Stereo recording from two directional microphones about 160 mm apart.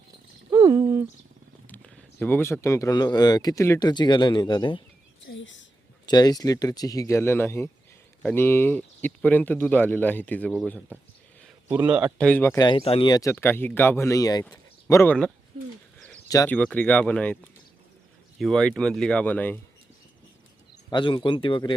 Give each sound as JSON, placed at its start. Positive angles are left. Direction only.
{"t": 0.5, "sound": "a sound", "side_deg": -20}
{"t": 1.6, "sound": "speech", "side_deg": 10}
{"t": 5.3, "sound": "speech", "side_deg": 90}
{"t": 6.1, "sound": "speech", "side_deg": 25}
{"t": 11.7, "sound": "speech", "side_deg": -10}
{"t": 12.1, "sound": "speech", "side_deg": 10}
{"t": 12.6, "sound": "speech", "side_deg": 35}
{"t": 13.1, "sound": "speech", "side_deg": 20}
{"t": 14.5, "sound": "a sound", "side_deg": 20}
{"t": 16.5, "sound": "speech", "side_deg": 10}
{"t": 20.9, "sound": "speech", "side_deg": 30}